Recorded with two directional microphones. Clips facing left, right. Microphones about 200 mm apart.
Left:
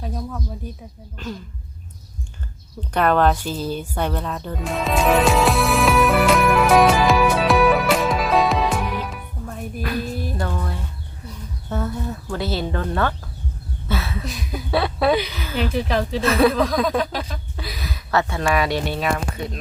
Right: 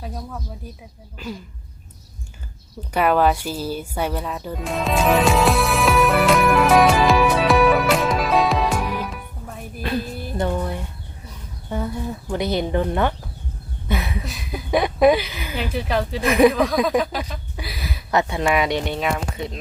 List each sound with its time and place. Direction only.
1.2 s speech: 10° right (ahead or behind)
2.9 s music: 10° right (ahead or behind)
9.8 s speech: 25° right (ahead or behind)
13.8 s a sound: 15° right (ahead or behind)
14.3 s speech: centre (ahead or behind)
14.7 s speech: 15° right (ahead or behind)
15.1 s speech: 5° right (ahead or behind)
16.2 s speech: 15° right (ahead or behind)
17.0 s speech: centre (ahead or behind)
17.6 s a sound: centre (ahead or behind)
18.1 s speech: 20° right (ahead or behind)